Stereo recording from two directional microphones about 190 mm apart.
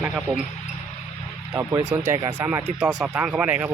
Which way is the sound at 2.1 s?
20° right (ahead or behind).